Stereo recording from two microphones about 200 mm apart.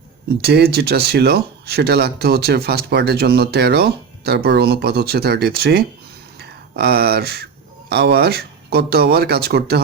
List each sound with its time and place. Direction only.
0.4 s speech: 55° right (ahead or behind)